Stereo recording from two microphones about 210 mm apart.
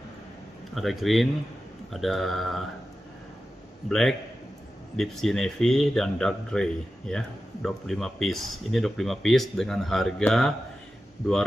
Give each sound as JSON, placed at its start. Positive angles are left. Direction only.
{"t": 0.7, "sound": "speech", "side_deg": 0}
{"t": 4.9, "sound": "speech", "side_deg": 0}